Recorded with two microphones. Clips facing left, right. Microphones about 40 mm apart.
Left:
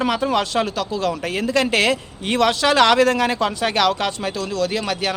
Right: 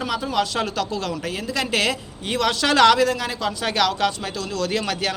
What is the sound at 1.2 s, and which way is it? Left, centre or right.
A man's voice, left.